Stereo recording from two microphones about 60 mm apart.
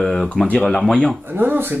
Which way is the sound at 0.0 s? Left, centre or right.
Centre.